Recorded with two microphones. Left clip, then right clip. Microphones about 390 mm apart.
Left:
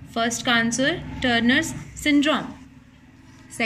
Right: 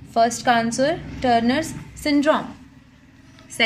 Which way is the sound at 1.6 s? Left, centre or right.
Right.